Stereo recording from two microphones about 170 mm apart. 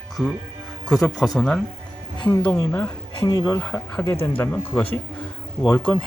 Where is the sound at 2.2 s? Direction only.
30° left (ahead or behind).